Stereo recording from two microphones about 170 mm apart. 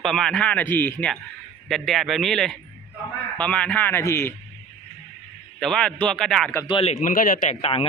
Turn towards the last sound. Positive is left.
turn(degrees=35)  # may be behind; listen again after turning